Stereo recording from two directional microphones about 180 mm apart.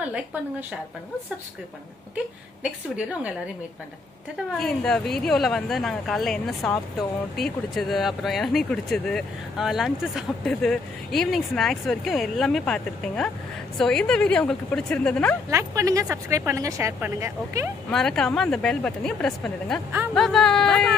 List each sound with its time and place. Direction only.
0.0 s a woman's voice: 10° right (ahead or behind)
2.6 s a woman's voice: 5° right (ahead or behind)
4.6 s speech: 5° left (ahead or behind)
15.5 s a woman's voice: 15° right (ahead or behind)
17.9 s speech: 5° left (ahead or behind)